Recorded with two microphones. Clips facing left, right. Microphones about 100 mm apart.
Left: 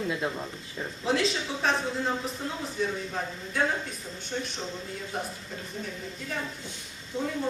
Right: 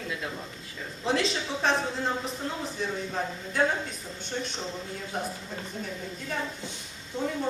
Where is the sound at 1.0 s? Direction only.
Centre (ahead or behind).